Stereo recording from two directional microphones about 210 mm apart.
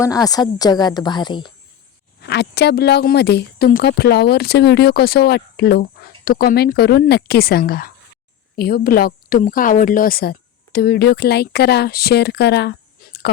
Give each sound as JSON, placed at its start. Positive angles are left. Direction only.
{"t": 0.0, "sound": "a woman's voice", "side_deg": 15}
{"t": 2.2, "sound": "a woman's voice", "side_deg": 55}